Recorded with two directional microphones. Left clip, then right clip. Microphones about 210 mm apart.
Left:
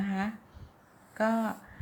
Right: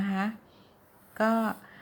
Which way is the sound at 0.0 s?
15° right (ahead or behind).